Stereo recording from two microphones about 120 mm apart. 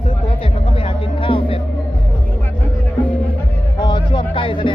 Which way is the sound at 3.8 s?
40° left (ahead or behind).